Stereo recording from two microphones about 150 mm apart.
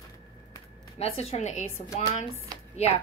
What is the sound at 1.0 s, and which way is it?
Speech, 40° left (ahead or behind).